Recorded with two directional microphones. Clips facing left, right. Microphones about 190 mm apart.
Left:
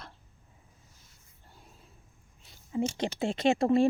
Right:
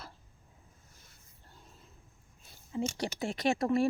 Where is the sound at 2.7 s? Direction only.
20° left (ahead or behind).